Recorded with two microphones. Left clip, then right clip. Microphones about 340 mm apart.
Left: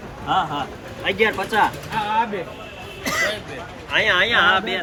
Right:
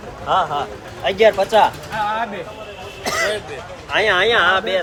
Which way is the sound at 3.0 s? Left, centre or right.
Right.